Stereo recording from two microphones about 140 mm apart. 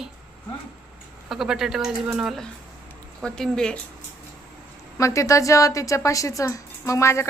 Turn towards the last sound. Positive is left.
turn(degrees=20)  # may be behind; listen again after turning